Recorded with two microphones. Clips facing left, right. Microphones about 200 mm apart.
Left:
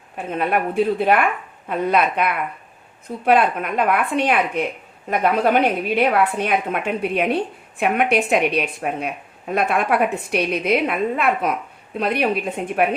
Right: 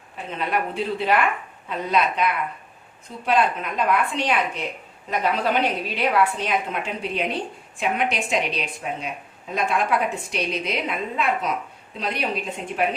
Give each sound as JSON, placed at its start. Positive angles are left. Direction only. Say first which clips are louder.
{"t": 0.2, "sound": "a woman's voice", "louder": "left 5 dB", "side_deg": 50}